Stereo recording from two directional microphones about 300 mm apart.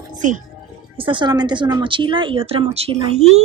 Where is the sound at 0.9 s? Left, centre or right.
Centre.